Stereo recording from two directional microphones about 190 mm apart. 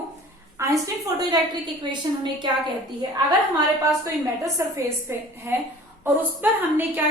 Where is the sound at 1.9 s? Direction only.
25° right (ahead or behind).